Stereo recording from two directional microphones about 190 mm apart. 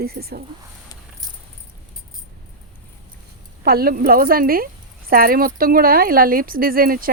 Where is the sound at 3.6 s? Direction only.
50° right (ahead or behind).